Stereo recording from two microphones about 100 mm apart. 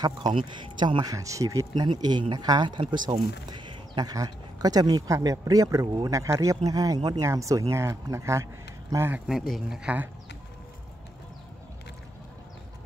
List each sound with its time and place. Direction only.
0.3 s speech: 55° right (ahead or behind)
1.1 s a man's voice: 35° right (ahead or behind)
1.8 s speech: 45° right (ahead or behind)
3.4 s a sound: 50° right (ahead or behind)
4.1 s a man's voice: 40° right (ahead or behind)
9.3 s a man's voice: 5° right (ahead or behind)